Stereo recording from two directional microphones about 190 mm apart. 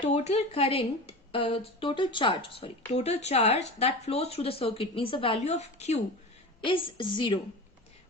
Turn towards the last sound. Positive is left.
turn(degrees=25)  # may be behind; listen again after turning